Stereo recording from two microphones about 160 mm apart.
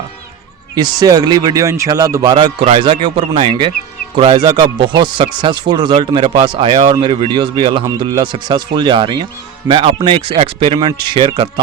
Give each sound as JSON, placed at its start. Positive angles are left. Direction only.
{"t": 0.8, "sound": "a man's voice", "side_deg": -25}